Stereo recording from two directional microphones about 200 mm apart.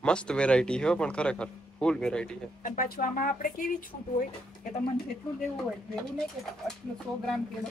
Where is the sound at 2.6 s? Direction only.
45° left (ahead or behind).